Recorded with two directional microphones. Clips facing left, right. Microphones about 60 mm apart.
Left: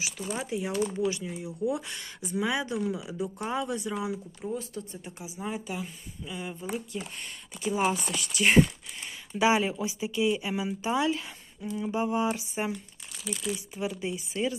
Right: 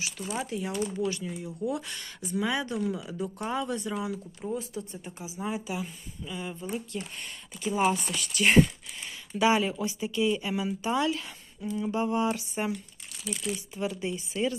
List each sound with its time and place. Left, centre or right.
0.0 s speech: centre
4.4 s speech: centre
4.9 s speech: centre
9.4 s speech: centre